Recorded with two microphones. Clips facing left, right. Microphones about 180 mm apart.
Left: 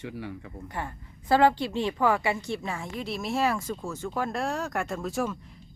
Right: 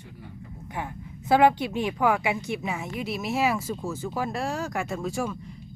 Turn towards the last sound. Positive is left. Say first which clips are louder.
# even
turn(degrees=0)  # may be behind; listen again after turning